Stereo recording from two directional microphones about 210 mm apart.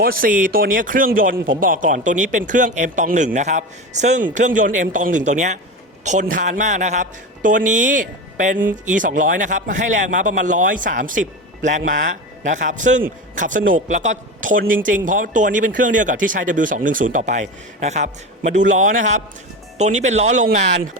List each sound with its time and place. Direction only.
0.0 s speech: 45° right (ahead or behind)